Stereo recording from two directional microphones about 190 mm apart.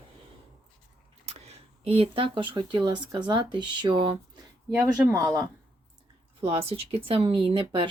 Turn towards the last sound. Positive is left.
turn(degrees=-25)  # may be behind; listen again after turning